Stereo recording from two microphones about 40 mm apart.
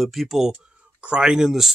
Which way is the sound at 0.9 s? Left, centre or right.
Right.